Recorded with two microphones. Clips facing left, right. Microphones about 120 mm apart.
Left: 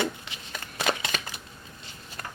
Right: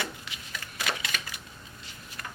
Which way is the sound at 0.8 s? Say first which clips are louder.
Left 5 dB; 30° left (ahead or behind).